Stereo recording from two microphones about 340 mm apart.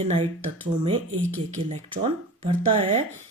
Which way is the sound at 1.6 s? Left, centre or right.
Centre.